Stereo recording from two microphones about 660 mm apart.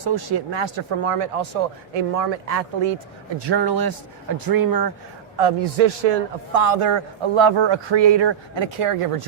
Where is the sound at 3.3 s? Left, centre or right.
Right.